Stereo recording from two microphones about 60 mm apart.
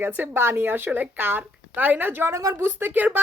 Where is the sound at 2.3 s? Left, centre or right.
Right.